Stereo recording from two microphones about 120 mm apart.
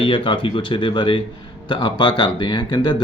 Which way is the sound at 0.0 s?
45° left (ahead or behind).